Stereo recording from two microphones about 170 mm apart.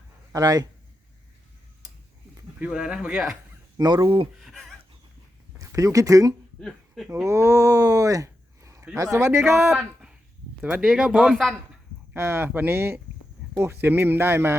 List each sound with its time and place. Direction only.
0.3 s speech: 20° right (ahead or behind)
2.6 s a man's voice: 5° right (ahead or behind)
3.8 s speech: 25° right (ahead or behind)
4.4 s a sound: centre (ahead or behind)
5.5 s speech: 20° right (ahead or behind)
6.6 s a sound: centre (ahead or behind)
7.1 s speech: 15° right (ahead or behind)
9.6 s a man's voice: centre (ahead or behind)
12.1 s speech: 15° right (ahead or behind)